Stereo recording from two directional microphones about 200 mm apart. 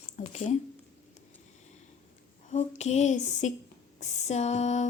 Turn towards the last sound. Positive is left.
turn(degrees=35)  # may be behind; listen again after turning